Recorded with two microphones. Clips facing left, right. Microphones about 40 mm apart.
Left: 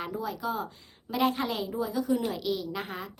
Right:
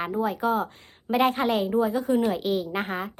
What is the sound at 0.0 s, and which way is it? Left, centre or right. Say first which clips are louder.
A woman's voice: right 7 dB; right.